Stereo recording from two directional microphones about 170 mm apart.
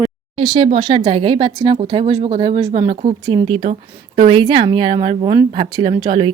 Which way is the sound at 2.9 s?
40° right (ahead or behind).